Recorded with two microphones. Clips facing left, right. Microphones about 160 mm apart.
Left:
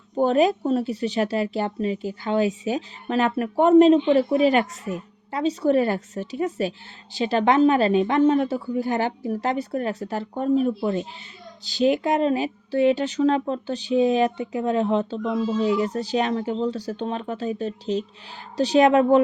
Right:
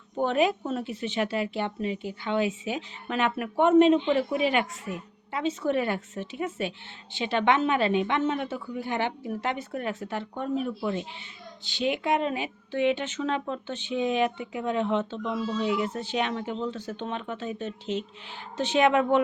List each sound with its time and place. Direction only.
0.2 s speech: 35° left (ahead or behind)